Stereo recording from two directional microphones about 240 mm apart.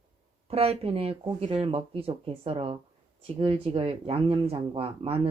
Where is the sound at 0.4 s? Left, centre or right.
Right.